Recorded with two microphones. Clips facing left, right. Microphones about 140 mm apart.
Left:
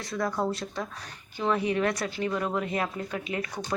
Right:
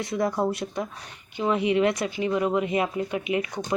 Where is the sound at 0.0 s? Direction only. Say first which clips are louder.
Right 4 dB; 25° right (ahead or behind).